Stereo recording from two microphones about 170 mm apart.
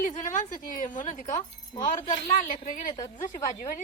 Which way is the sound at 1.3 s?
20° left (ahead or behind).